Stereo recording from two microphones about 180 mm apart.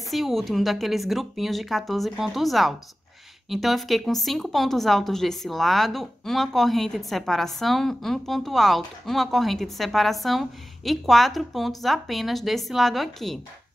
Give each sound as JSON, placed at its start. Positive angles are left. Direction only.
{"t": 0.1, "sound": "speech", "side_deg": 0}